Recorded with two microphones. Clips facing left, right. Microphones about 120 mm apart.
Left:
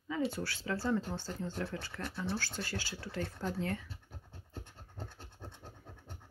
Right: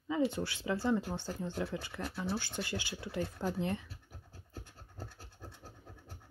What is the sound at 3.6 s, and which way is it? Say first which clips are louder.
Speech: even; 20° right (ahead or behind).